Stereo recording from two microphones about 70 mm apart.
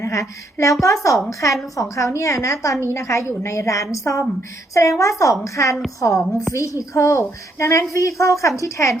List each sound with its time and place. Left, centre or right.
0.0 s a sound: left
0.6 s a woman's voice: left
6.1 s a woman's voice: centre
6.5 s a woman's voice: left